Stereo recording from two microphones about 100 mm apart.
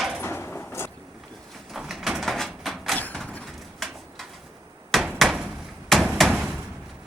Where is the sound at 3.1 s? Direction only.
10° left (ahead or behind).